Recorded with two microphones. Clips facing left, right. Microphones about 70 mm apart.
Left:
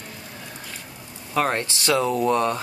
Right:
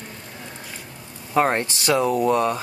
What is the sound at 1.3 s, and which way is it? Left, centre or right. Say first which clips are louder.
Speech: right 3 dB; right.